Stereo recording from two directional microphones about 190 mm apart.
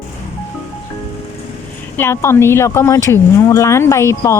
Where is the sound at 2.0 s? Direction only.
15° left (ahead or behind).